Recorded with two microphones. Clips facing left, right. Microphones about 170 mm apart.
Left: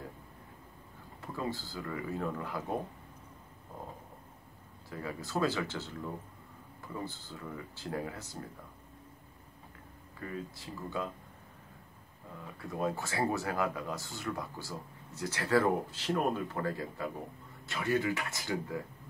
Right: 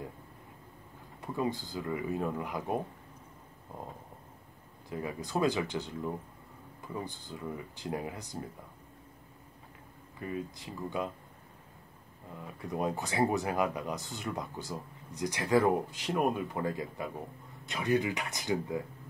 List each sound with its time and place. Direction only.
1.2 s speech: 20° right (ahead or behind)
4.8 s speech: 20° right (ahead or behind)
10.2 s speech: 20° right (ahead or behind)
12.4 s speech: 20° right (ahead or behind)